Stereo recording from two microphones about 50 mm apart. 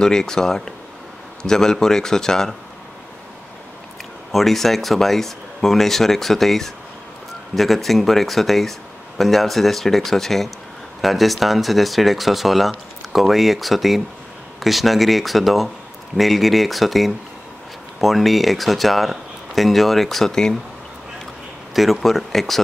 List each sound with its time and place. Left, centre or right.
0.0 s speech: centre
4.3 s speech: centre
22.0 s speech: centre